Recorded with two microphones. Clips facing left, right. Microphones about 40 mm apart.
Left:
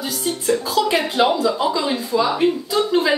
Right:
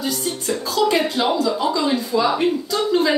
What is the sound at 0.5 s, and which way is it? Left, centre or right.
A woman's voice, centre.